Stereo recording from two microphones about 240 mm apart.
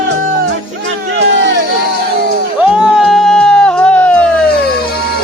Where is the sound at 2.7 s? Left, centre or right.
Centre.